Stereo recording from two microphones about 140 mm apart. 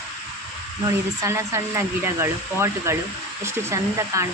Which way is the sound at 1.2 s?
20° right (ahead or behind).